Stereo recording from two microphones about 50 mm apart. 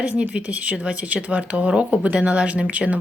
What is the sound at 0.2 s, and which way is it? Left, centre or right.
Speech, right.